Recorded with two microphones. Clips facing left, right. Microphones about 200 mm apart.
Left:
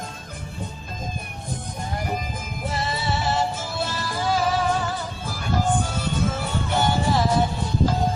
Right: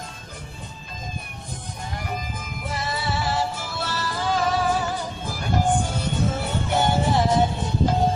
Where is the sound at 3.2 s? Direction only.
20° left (ahead or behind).